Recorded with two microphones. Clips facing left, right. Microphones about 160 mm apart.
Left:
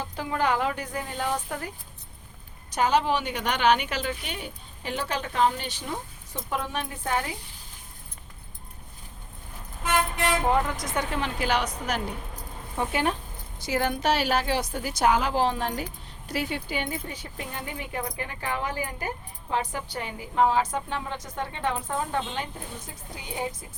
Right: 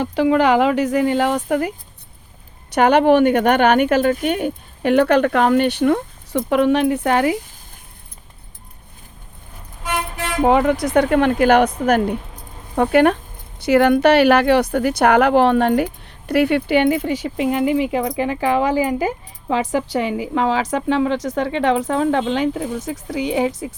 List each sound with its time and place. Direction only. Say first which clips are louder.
0.0 s speech: right 12 dB; 85° right
2.6 s speech: right 11 dB; 65° right (ahead or behind); by 7.3 s 85° right
10.4 s speech: right 10 dB; 80° right; by 12.1 s 55° right (ahead or behind)
12.7 s speech: right 13 dB; 65° right (ahead or behind); by 23.7 s 85° right